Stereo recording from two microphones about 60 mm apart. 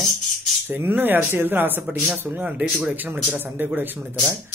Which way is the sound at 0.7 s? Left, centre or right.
Right.